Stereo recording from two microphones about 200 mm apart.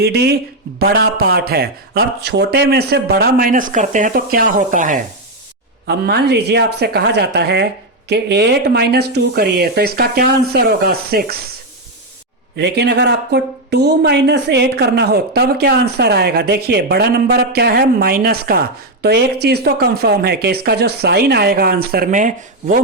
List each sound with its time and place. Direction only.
0.0 s speech: 55° right (ahead or behind)
5.9 s speech: 55° right (ahead or behind)
12.5 s speech: 55° right (ahead or behind)